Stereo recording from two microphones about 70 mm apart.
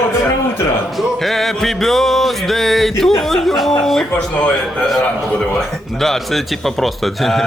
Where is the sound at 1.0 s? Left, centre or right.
Centre.